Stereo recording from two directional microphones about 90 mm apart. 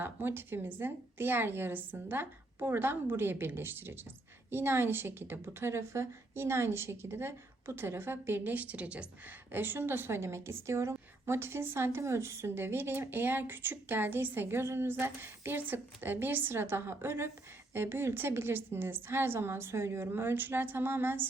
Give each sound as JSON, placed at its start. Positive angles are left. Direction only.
{"t": 0.0, "sound": "a woman's voice", "side_deg": -25}